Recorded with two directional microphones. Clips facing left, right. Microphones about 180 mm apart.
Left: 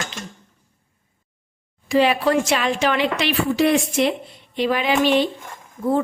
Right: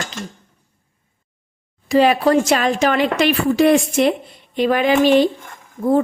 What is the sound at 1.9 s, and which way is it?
A woman's voice, 40° right (ahead or behind).